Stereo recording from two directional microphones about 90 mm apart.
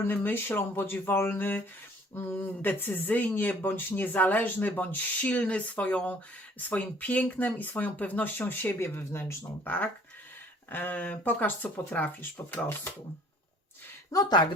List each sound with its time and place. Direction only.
0.1 s speech: 20° left (ahead or behind)
14.1 s speech: 45° left (ahead or behind)